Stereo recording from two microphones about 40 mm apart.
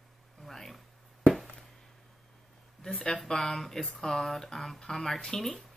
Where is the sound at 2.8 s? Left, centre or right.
Centre.